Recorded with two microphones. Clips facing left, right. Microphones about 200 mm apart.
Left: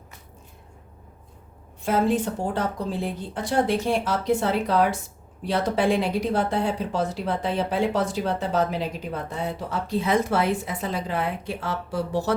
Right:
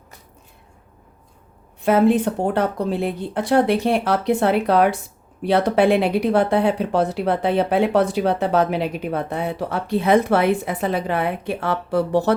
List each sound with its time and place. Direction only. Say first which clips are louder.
1.8 s speech: right 6 dB; 65° right (ahead or behind)